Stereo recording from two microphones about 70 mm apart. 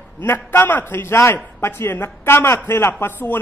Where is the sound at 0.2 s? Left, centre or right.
Left.